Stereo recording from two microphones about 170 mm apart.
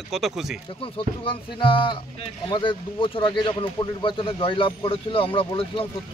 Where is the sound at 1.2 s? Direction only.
30° left (ahead or behind).